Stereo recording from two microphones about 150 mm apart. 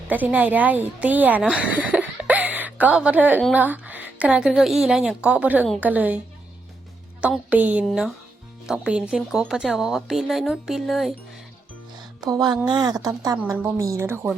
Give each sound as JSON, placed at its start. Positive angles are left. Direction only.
{"t": 0.1, "sound": "a woman's voice", "side_deg": -10}
{"t": 7.2, "sound": "a woman's voice", "side_deg": -10}
{"t": 12.2, "sound": "a woman's voice", "side_deg": -25}